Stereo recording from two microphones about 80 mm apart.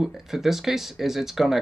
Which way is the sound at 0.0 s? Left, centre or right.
Centre.